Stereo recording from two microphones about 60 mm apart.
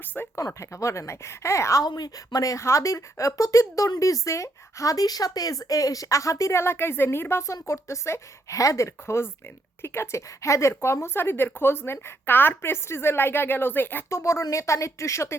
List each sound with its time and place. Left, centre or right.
0.3 s speech: left
1.8 s speech: left
14.1 s speech: left